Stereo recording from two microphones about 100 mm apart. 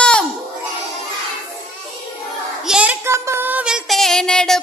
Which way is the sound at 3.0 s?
25° right (ahead or behind).